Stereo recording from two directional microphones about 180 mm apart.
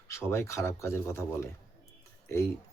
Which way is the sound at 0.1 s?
15° left (ahead or behind).